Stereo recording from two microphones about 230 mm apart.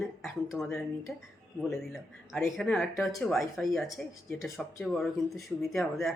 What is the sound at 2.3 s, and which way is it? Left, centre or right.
Speech, centre.